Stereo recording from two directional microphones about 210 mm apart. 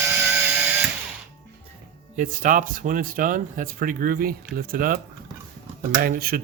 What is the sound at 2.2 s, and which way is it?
Speech, 40° right (ahead or behind).